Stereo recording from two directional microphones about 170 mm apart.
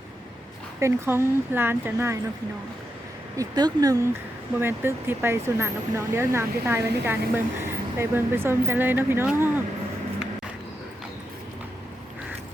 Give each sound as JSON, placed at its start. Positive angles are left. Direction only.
{"t": 0.8, "sound": "speech", "side_deg": -15}
{"t": 3.3, "sound": "speech", "side_deg": -25}